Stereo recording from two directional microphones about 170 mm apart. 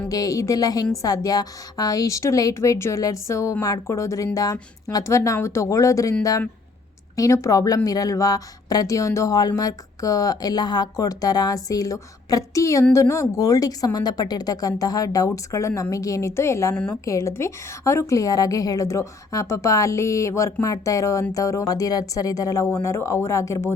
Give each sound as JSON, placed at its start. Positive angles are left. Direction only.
{"t": 0.1, "sound": "a woman's voice", "side_deg": 20}
{"t": 7.2, "sound": "a woman's voice", "side_deg": 20}
{"t": 16.7, "sound": "a woman's voice", "side_deg": 5}
{"t": 17.1, "sound": "a woman's voice", "side_deg": 15}